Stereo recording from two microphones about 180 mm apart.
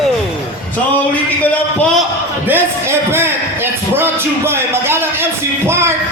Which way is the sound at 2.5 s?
10° right (ahead or behind).